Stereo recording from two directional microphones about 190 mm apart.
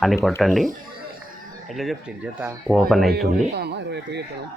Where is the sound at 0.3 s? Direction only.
Centre (ahead or behind).